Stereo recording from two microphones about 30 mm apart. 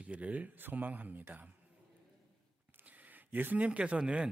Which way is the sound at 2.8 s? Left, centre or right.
Right.